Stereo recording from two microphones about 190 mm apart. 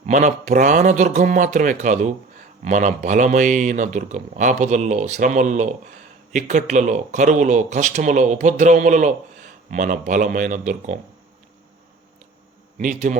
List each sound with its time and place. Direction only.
0.0 s speech: 40° right (ahead or behind)
12.7 s a man's voice: 40° right (ahead or behind)